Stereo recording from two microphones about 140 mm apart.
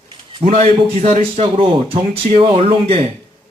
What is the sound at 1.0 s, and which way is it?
Speech, 55° right (ahead or behind).